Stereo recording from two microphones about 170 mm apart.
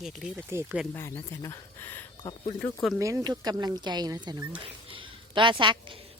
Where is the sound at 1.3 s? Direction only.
20° left (ahead or behind).